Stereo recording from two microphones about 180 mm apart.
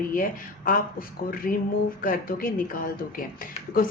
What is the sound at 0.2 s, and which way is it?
A woman's voice, 50° left (ahead or behind).